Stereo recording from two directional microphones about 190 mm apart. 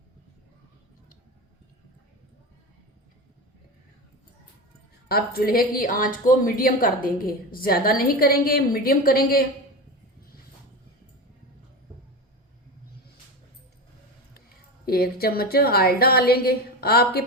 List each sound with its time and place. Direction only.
5.0 s a woman's voice: 50° left (ahead or behind)
14.8 s a woman's voice: 50° left (ahead or behind)